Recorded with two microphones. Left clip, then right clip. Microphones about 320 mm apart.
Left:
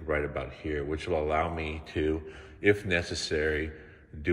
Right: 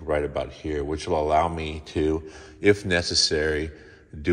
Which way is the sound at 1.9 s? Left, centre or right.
Right.